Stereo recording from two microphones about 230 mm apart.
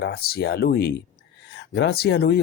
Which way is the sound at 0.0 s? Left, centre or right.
Left.